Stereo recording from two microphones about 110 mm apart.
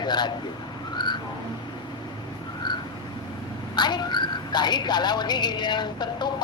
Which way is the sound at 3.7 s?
40° left (ahead or behind).